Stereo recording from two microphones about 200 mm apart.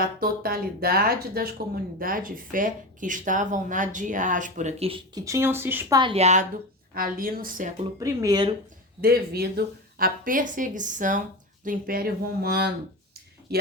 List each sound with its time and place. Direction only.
0.0 s speech: 45° right (ahead or behind); by 6.0 s 10° right (ahead or behind)
6.0 s speech: 30° right (ahead or behind)
6.9 s speech: 45° right (ahead or behind)
7.9 s speech: 15° right (ahead or behind)
9.0 s speech: 50° right (ahead or behind)
13.5 s a sound: 50° right (ahead or behind)